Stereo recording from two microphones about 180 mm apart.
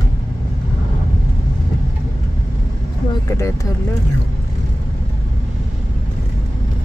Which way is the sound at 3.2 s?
20° left (ahead or behind).